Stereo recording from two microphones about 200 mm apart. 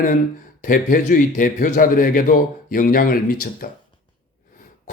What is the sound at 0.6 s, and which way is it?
Speech, 40° left (ahead or behind).